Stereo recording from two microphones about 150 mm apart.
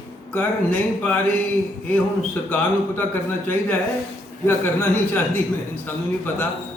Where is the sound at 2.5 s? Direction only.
10° left (ahead or behind).